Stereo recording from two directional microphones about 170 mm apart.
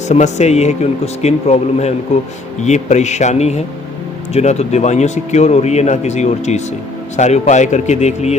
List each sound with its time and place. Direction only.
0.1 s a man's voice: 40° left (ahead or behind)